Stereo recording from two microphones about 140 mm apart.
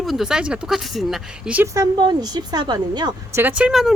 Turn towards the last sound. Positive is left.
turn(degrees=-5)  # may be behind; listen again after turning